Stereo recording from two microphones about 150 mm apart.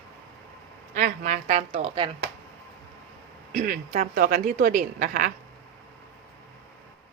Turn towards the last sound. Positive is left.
turn(degrees=-65)  # may be behind; listen again after turning